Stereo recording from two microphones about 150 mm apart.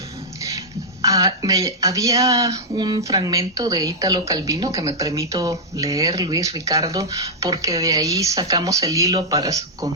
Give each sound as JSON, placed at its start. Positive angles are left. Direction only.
{"t": 1.0, "sound": "speech", "side_deg": -20}